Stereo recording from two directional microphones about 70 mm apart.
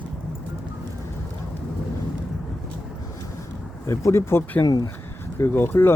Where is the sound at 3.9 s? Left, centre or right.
Left.